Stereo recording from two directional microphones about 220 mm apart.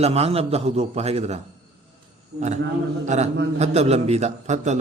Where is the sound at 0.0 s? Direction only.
30° right (ahead or behind).